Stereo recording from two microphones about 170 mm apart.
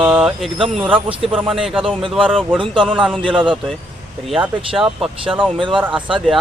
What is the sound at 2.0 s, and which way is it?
A man's voice, 30° right (ahead or behind).